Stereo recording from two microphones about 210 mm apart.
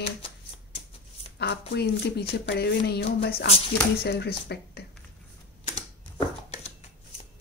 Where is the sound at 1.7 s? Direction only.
50° left (ahead or behind).